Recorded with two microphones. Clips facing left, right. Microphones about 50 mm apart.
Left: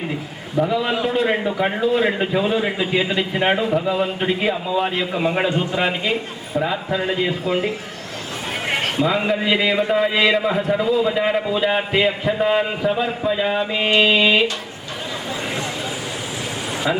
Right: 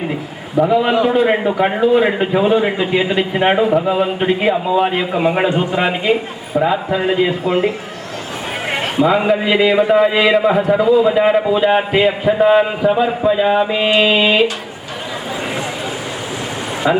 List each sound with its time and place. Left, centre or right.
0.6 s a man's voice: centre
8.7 s a man's voice: centre
16.9 s speech: right